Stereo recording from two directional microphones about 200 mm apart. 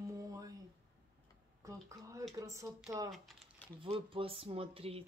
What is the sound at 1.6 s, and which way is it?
Speech, 15° right (ahead or behind).